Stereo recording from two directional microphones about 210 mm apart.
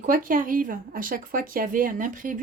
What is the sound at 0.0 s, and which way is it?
Speech, 40° right (ahead or behind).